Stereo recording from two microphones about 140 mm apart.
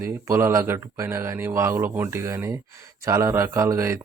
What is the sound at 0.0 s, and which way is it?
Speech, 20° right (ahead or behind).